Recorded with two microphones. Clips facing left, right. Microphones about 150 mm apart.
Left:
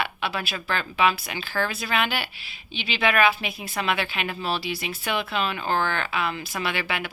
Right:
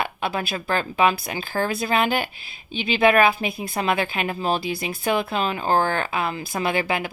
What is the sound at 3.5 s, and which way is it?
Speech, 25° right (ahead or behind).